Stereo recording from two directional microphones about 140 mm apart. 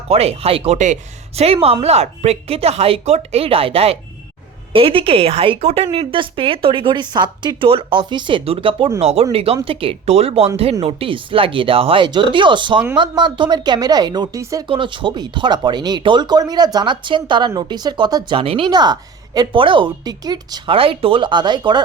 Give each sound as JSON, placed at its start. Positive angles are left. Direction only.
{"t": 0.1, "sound": "a woman's voice", "side_deg": -45}
{"t": 18.7, "sound": "speech", "side_deg": -30}